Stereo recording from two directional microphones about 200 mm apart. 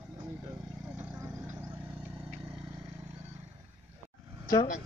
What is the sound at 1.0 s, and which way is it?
Vehicle, 10° right (ahead or behind).